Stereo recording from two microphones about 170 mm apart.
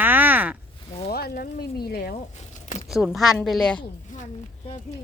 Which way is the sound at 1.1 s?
60° left (ahead or behind).